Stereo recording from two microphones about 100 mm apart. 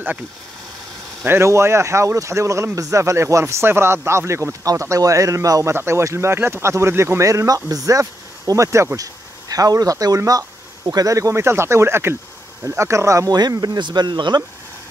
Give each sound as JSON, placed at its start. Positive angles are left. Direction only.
{"t": 1.2, "sound": "speech", "side_deg": -25}
{"t": 13.4, "sound": "speech", "side_deg": -45}